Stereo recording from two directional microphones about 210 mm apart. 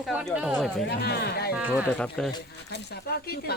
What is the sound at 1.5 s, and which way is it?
Speech, 5° right (ahead or behind).